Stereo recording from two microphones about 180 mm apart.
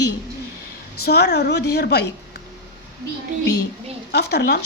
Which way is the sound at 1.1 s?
65° left (ahead or behind).